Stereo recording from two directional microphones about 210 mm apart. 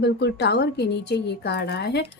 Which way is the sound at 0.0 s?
55° left (ahead or behind).